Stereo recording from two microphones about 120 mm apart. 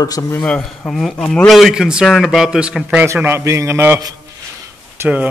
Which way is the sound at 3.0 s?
20° right (ahead or behind).